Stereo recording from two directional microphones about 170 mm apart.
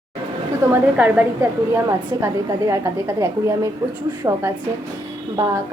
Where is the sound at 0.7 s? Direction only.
10° right (ahead or behind).